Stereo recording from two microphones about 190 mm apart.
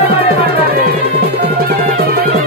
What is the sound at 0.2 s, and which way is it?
Music, 55° right (ahead or behind).